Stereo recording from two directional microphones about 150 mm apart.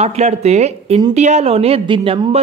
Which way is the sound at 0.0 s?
45° right (ahead or behind).